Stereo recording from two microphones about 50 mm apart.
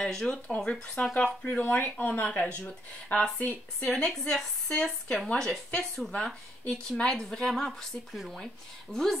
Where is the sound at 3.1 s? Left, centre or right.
Left.